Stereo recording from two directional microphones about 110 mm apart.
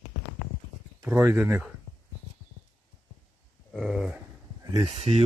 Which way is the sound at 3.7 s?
Centre (ahead or behind).